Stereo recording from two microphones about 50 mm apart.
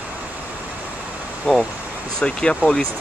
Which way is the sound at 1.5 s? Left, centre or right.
Centre.